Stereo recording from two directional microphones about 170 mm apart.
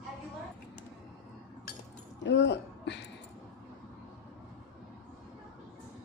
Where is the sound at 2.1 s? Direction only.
90° left.